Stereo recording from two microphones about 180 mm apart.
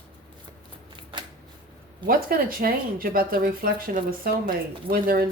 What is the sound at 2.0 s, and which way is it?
Speech, 50° right (ahead or behind).